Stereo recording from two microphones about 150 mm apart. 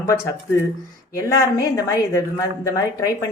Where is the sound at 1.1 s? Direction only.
20° left (ahead or behind).